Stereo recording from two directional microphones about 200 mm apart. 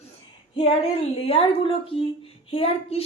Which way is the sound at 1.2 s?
30° left (ahead or behind).